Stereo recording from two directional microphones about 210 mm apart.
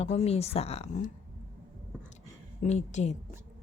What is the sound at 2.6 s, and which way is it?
Speech, 35° left (ahead or behind).